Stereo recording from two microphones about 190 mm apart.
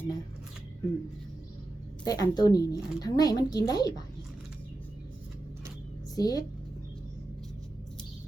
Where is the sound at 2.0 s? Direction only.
20° left (ahead or behind).